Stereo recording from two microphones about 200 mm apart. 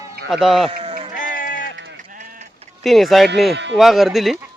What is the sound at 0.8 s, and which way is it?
Sheep, 30° right (ahead or behind).